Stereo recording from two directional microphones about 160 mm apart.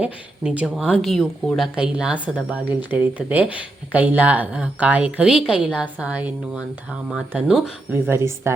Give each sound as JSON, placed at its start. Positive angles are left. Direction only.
{"t": 0.0, "sound": "a woman's voice", "side_deg": -10}